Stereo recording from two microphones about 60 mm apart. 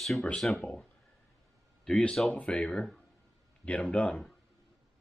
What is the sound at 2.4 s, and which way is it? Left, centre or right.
Speech, centre.